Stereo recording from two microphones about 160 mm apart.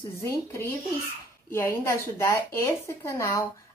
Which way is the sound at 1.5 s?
20° left (ahead or behind).